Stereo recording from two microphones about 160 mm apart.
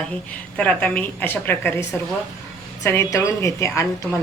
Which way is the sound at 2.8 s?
15° left (ahead or behind).